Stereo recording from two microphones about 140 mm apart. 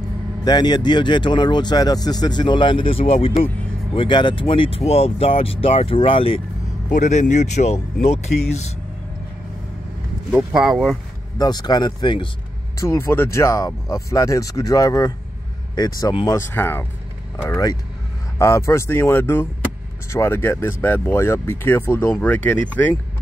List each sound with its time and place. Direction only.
0.5 s speech: 30° left (ahead or behind)
6.9 s speech: 60° left (ahead or behind)
10.3 s speech: 5° right (ahead or behind)
11.3 s speech: 30° left (ahead or behind)
12.7 s speech: 20° left (ahead or behind)
16.3 s speech: 15° left (ahead or behind)